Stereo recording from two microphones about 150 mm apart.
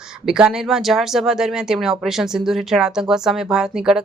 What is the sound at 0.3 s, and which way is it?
Speech, 5° right (ahead or behind).